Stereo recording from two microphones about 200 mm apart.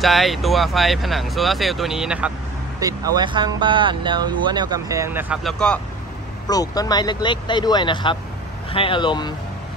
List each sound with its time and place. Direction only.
0.0 s speech: centre (ahead or behind)
2.8 s speech: 15° right (ahead or behind)
5.4 s speech: 5° left (ahead or behind)
6.4 s speech: 20° left (ahead or behind)